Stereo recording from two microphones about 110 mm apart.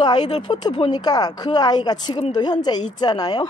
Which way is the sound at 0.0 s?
40° left (ahead or behind).